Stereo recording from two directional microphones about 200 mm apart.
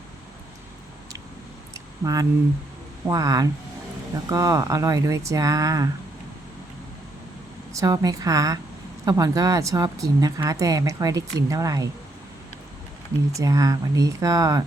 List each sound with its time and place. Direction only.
1.7 s a sound: 15° right (ahead or behind)
3.1 s speech: 15° right (ahead or behind)
7.7 s speech: 15° right (ahead or behind)
13.3 s speech: 15° right (ahead or behind)